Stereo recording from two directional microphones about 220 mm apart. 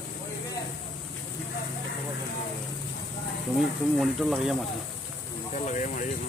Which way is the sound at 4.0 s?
Centre (ahead or behind).